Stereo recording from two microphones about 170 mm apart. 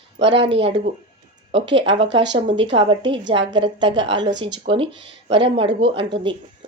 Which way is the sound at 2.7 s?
30° right (ahead or behind).